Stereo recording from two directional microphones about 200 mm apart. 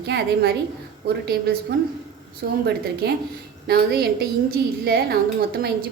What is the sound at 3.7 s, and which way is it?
A woman's voice, 50° right (ahead or behind).